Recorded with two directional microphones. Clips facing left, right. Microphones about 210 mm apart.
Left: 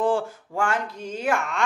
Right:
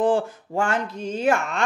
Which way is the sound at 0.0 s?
20° right (ahead or behind).